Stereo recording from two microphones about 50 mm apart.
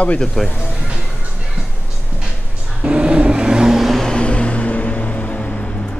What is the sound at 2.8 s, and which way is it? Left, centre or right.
Vehicle, right.